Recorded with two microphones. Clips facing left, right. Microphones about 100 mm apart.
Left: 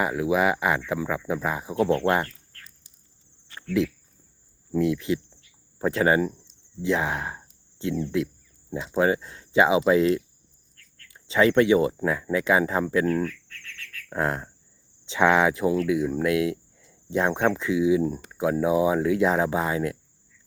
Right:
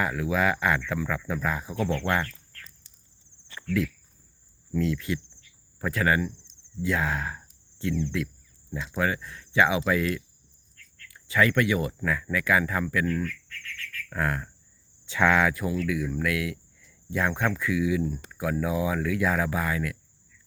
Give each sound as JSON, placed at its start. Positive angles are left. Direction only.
{"t": 0.0, "sound": "speech", "side_deg": 20}
{"t": 3.7, "sound": "speech", "side_deg": 25}
{"t": 13.5, "sound": "bird", "side_deg": 15}
{"t": 15.0, "sound": "speech", "side_deg": 20}
{"t": 18.0, "sound": "speech", "side_deg": 35}
{"t": 18.3, "sound": "speech", "side_deg": 20}